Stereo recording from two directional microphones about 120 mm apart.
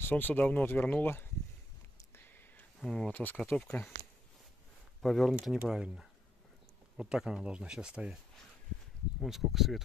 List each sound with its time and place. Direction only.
0.0 s speech: 15° left (ahead or behind)
2.1 s a sound: 15° left (ahead or behind)
2.8 s speech: centre (ahead or behind)
3.1 s speech: 15° left (ahead or behind)
5.0 s speech: centre (ahead or behind)
9.2 s speech: centre (ahead or behind)